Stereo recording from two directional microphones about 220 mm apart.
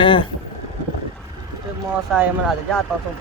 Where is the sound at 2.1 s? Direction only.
Centre (ahead or behind).